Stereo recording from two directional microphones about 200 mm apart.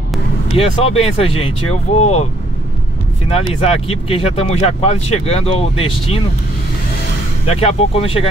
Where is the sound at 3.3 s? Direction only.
30° left (ahead or behind).